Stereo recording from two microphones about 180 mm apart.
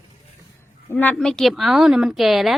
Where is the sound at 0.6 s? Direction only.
10° left (ahead or behind).